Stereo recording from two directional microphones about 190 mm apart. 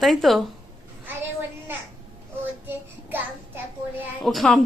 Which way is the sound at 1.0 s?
10° right (ahead or behind).